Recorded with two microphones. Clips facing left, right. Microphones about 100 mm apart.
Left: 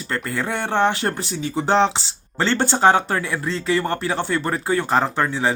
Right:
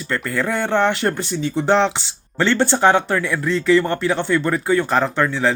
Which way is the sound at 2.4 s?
35° left (ahead or behind).